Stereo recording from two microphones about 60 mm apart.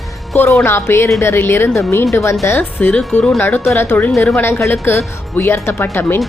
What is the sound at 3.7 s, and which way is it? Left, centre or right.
Speech, left.